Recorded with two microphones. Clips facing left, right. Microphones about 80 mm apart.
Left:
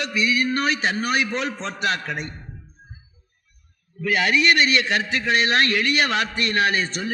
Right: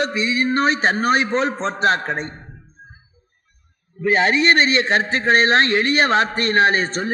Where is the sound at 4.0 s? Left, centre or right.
Right.